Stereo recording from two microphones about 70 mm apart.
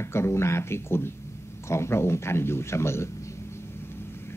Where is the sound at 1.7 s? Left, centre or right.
Left.